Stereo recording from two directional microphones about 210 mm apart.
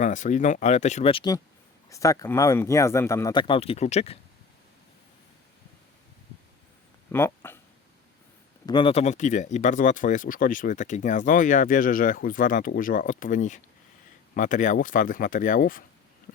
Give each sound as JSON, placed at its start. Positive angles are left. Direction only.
{"t": 0.0, "sound": "speech", "side_deg": 35}
{"t": 7.1, "sound": "a sound", "side_deg": 10}
{"t": 8.6, "sound": "speech", "side_deg": 20}